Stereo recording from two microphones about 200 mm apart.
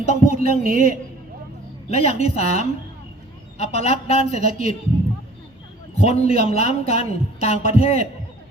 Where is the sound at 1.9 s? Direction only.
30° left (ahead or behind).